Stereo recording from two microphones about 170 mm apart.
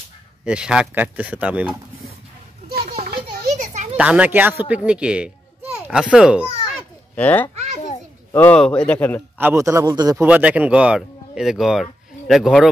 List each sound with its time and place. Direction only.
0.5 s speech: 5° right (ahead or behind)
2.8 s children playing: 35° right (ahead or behind)
3.5 s a sound: 45° right (ahead or behind)
3.9 s speech: 10° right (ahead or behind)
5.7 s a sound: 5° right (ahead or behind)
6.1 s a child's voice: 5° right (ahead or behind)
7.2 s speech: 10° left (ahead or behind)
9.4 s speech: 15° right (ahead or behind)
10.2 s speech: 10° right (ahead or behind)